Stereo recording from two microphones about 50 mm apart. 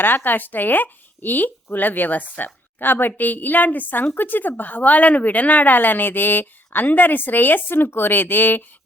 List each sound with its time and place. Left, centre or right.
0.0 s speech: left